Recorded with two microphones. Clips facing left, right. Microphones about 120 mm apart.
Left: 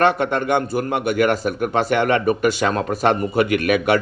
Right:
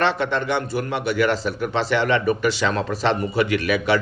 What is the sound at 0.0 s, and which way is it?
Speech, 50° left (ahead or behind).